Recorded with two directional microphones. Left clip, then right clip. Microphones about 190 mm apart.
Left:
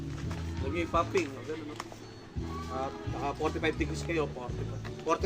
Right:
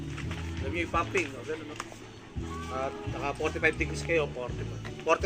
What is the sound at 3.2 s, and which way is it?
A man's voice, 45° left (ahead or behind).